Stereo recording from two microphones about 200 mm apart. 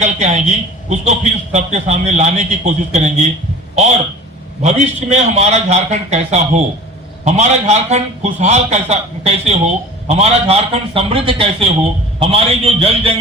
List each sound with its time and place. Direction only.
0.0 s a man's voice: 35° right (ahead or behind)
4.6 s a man's voice: 35° right (ahead or behind)